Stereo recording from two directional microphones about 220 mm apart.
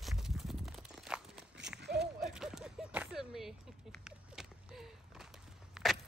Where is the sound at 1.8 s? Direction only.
50° right (ahead or behind).